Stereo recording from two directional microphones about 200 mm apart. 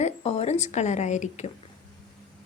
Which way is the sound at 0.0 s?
30° left (ahead or behind).